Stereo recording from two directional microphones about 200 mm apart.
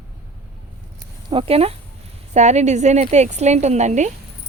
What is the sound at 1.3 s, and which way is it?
Speech, 30° right (ahead or behind).